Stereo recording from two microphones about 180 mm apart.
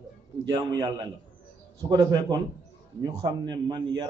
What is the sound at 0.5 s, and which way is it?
A man's voice, 20° right (ahead or behind).